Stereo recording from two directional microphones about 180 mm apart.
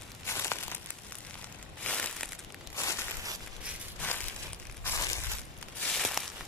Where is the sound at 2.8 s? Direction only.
15° left (ahead or behind).